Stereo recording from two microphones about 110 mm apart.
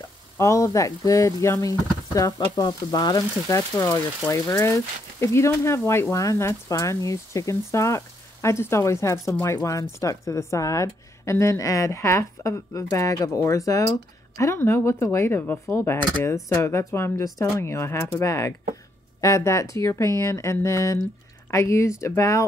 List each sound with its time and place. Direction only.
0.4 s speech: 30° left (ahead or behind)